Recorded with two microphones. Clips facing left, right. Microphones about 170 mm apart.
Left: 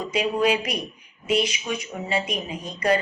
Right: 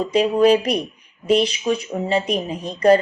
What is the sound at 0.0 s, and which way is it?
A woman's voice, 35° right (ahead or behind).